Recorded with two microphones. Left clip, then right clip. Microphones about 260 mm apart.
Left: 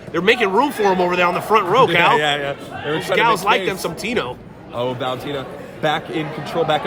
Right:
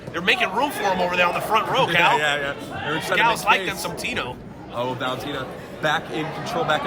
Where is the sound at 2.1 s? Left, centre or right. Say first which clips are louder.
Left 4 dB; left.